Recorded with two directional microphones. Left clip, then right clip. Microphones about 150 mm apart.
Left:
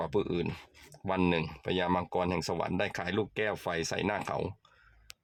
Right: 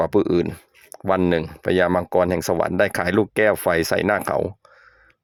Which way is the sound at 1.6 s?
55° right (ahead or behind).